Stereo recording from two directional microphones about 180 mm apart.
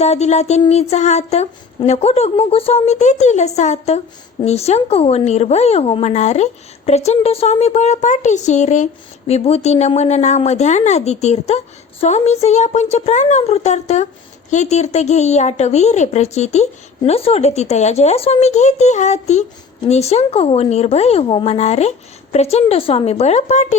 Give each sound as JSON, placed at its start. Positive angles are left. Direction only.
{"t": 0.0, "sound": "a woman's voice", "side_deg": 40}